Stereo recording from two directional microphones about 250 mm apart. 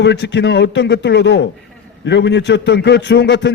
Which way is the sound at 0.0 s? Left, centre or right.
Left.